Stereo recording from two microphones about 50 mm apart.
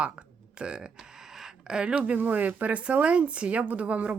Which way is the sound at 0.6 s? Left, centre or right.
Centre.